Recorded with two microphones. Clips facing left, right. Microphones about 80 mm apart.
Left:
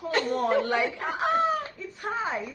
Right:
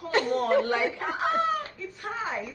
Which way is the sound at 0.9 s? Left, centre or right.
Left.